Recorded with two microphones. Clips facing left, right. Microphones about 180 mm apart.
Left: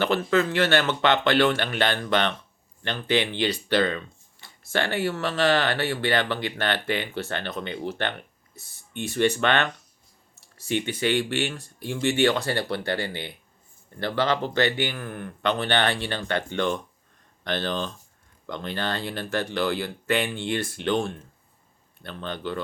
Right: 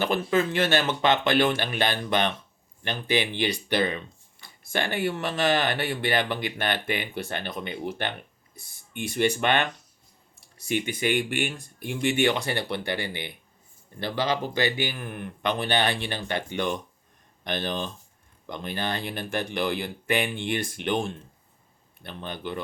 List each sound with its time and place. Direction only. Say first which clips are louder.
0.3 s speech: left 1 dB; 15° right (ahead or behind)
10.7 s speech: left 1 dB; 10° right (ahead or behind)